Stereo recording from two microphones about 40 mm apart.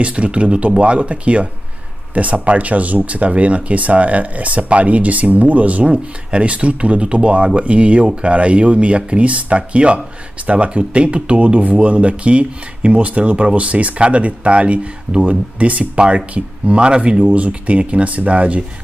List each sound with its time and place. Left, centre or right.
0.0 s speech: right